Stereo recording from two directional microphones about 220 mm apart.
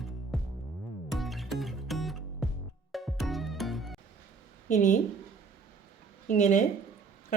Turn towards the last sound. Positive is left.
turn(degrees=35)  # may be behind; listen again after turning